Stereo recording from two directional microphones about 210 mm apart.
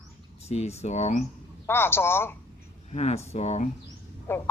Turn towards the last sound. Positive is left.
turn(degrees=10)  # may be behind; listen again after turning